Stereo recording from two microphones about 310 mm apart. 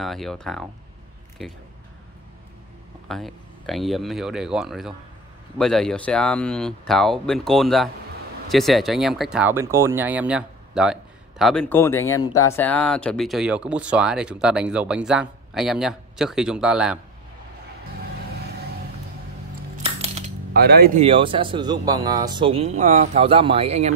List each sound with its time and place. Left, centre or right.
0.0 s speech: centre
3.1 s speech: centre
19.8 s speech: right